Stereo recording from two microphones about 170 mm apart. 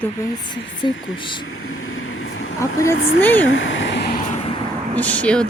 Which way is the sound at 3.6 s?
90° left.